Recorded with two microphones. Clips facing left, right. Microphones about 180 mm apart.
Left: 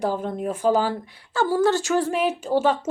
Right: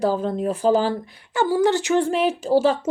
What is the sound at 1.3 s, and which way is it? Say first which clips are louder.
Speech: right 1 dB; 15° right (ahead or behind).